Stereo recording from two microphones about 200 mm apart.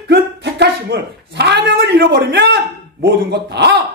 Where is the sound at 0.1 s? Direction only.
55° right (ahead or behind).